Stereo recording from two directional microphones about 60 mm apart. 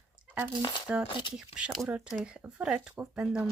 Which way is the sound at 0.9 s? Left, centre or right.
Centre.